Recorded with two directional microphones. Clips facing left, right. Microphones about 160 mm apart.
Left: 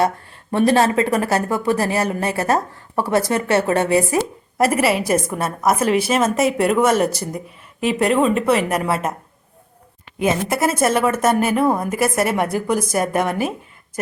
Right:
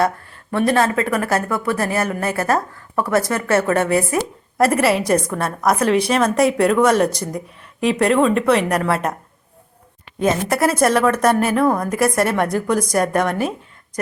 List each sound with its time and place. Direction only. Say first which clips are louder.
0.5 s a woman's voice: left 2 dB; 30° left (ahead or behind)
4.5 s a woman's voice: right 1 dB; centre (ahead or behind)
10.2 s a woman's voice: right 1 dB; 5° left (ahead or behind)